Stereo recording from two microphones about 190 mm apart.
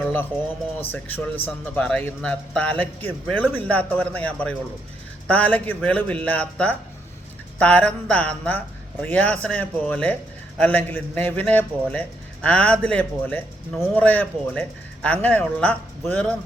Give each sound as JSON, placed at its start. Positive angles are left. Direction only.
{"t": 0.8, "sound": "speech", "side_deg": 10}